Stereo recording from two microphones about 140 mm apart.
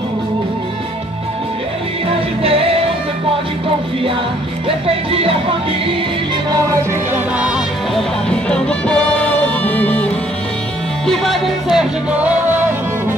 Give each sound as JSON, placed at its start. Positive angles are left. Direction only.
{"t": 4.6, "sound": "speech", "side_deg": -45}
{"t": 6.5, "sound": "music", "side_deg": -25}
{"t": 7.3, "sound": "music", "side_deg": -5}
{"t": 8.3, "sound": "music", "side_deg": 5}
{"t": 11.1, "sound": "music", "side_deg": 0}